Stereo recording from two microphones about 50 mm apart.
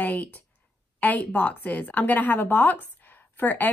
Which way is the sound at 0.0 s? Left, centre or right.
Left.